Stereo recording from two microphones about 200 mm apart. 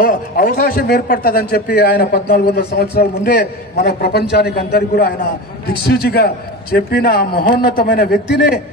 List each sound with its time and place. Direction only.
0.0 s a man's voice: 45° left (ahead or behind)